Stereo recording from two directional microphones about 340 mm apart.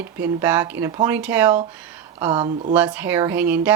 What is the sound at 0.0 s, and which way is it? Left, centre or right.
Speech, centre.